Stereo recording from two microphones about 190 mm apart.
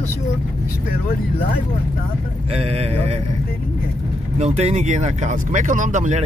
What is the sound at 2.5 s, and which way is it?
Speech, 30° right (ahead or behind).